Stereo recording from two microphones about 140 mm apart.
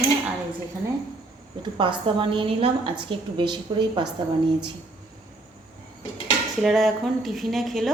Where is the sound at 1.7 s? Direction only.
35° right (ahead or behind).